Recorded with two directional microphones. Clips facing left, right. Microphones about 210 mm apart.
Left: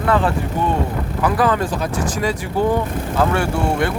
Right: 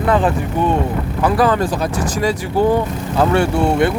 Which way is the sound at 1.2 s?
35° right (ahead or behind).